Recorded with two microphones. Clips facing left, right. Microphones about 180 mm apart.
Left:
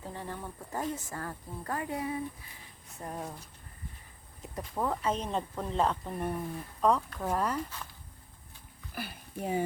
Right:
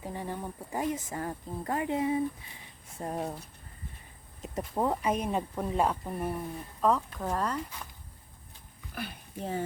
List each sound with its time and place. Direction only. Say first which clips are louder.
0.0 s speech: right 3 dB; 15° right (ahead or behind); by 3.3 s 30° right (ahead or behind)
4.4 s speech: right 3 dB; 20° right (ahead or behind); by 7.6 s 5° left (ahead or behind)
9.0 s speech: even; 10° left (ahead or behind)